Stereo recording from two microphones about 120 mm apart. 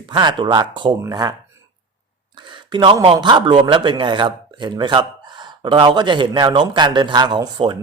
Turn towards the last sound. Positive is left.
turn(degrees=-40)  # may be behind; listen again after turning